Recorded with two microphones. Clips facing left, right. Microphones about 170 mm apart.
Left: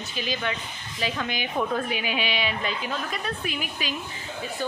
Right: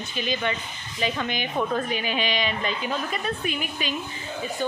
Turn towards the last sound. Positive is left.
turn(degrees=0)  # may be behind; listen again after turning